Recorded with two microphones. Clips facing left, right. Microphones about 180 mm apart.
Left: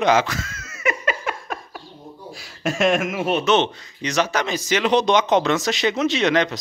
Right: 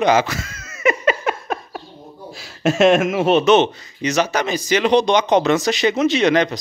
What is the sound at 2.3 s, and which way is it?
Speech, 25° right (ahead or behind).